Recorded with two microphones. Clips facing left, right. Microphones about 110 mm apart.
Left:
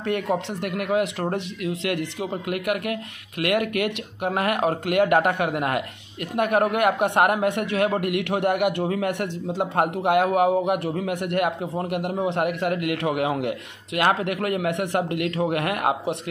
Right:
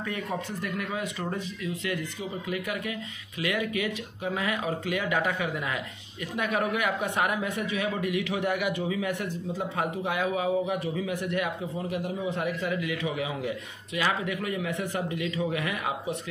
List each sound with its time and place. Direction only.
0.0 s a man's voice: 75° left (ahead or behind)